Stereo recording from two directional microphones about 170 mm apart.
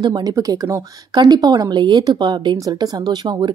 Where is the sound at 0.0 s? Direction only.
25° right (ahead or behind).